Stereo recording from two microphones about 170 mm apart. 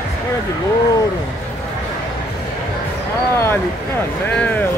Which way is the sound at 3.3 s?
15° left (ahead or behind).